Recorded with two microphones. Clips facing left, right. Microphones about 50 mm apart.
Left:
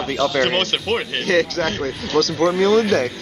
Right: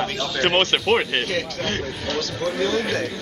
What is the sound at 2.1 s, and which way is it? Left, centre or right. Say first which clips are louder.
Speech: left 9 dB; left.